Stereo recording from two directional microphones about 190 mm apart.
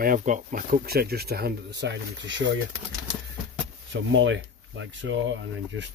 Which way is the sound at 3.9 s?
75° right (ahead or behind).